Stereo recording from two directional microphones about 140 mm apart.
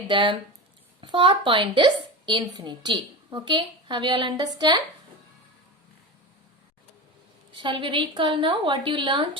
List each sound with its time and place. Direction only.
0.1 s a woman's voice: 35° right (ahead or behind)
7.5 s a woman's voice: 35° right (ahead or behind)